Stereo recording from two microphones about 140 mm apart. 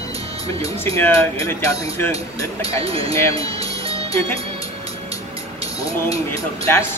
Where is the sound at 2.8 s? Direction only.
45° right (ahead or behind).